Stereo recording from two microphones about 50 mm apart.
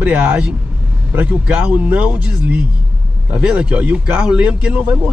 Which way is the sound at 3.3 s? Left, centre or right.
Right.